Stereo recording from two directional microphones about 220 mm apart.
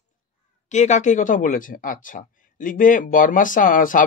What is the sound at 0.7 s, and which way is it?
Speech, 30° left (ahead or behind).